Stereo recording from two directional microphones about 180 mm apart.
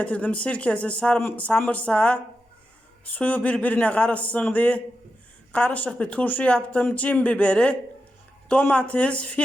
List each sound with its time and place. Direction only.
0.0 s speech: 5° left (ahead or behind)
3.2 s speech: 10° left (ahead or behind)